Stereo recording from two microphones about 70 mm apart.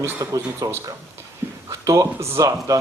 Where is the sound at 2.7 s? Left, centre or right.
Right.